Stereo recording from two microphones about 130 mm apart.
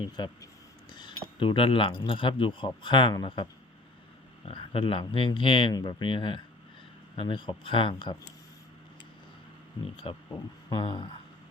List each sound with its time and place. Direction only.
0.2 s speech: 35° left (ahead or behind)
4.4 s speech: 45° left (ahead or behind)
9.8 s speech: 35° left (ahead or behind)